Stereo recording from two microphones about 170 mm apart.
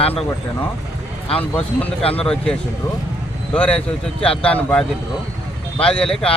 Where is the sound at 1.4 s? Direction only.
10° left (ahead or behind).